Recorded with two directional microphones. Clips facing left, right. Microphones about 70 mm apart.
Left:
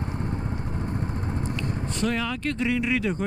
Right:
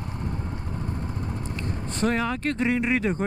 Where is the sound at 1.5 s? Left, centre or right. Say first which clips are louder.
Left 2 dB; right.